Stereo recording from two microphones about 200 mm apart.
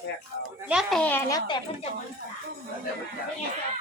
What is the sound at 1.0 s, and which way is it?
Speech, 10° left (ahead or behind).